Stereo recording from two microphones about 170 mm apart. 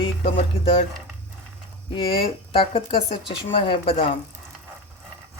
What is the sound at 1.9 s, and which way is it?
Speech, 30° left (ahead or behind).